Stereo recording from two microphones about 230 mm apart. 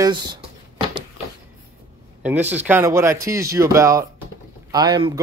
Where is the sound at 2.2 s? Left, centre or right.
Centre.